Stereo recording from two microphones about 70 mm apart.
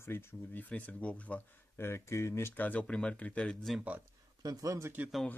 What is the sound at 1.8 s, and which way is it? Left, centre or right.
Speech, left.